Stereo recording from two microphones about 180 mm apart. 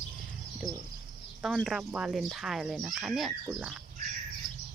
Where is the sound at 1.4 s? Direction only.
Centre (ahead or behind).